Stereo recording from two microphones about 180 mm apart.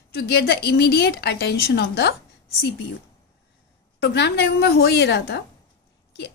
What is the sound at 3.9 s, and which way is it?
A woman's voice, 65° left (ahead or behind).